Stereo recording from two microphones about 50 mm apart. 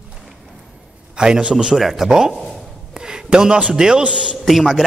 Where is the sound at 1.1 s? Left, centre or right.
Centre.